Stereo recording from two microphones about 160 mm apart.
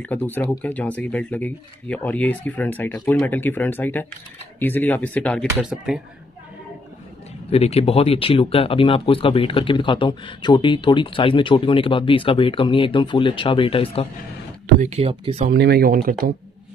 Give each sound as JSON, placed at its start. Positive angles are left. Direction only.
{"t": 0.0, "sound": "speech", "side_deg": 10}
{"t": 5.6, "sound": "speech", "side_deg": -5}
{"t": 7.4, "sound": "speech", "side_deg": 40}
{"t": 14.8, "sound": "speech", "side_deg": -40}
{"t": 15.5, "sound": "speech", "side_deg": -85}